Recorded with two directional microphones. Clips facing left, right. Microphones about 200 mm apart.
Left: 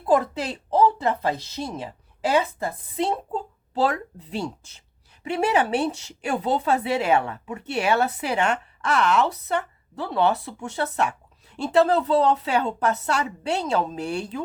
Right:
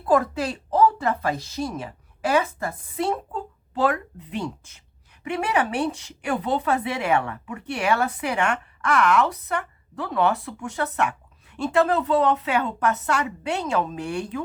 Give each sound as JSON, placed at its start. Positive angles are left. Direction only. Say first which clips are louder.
{"t": 0.0, "sound": "a woman's voice", "louder": "even", "side_deg": 20}